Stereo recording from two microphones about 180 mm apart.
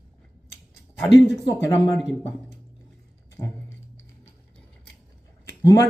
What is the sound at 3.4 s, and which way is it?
Speech, 15° left (ahead or behind).